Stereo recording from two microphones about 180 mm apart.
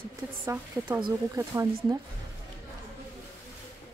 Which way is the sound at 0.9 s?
20° right (ahead or behind).